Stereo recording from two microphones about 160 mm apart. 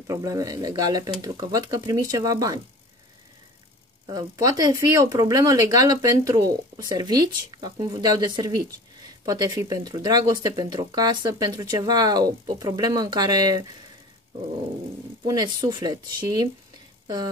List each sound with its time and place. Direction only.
0.0 s speech: 20° right (ahead or behind)
4.1 s speech: 20° right (ahead or behind)
15.2 s speech: 25° right (ahead or behind)